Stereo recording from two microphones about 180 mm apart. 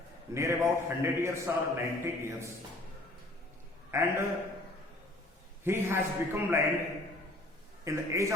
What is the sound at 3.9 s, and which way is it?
Speech, 15° right (ahead or behind).